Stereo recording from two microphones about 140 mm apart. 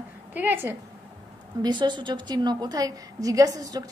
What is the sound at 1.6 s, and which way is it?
A woman's voice, 35° right (ahead or behind).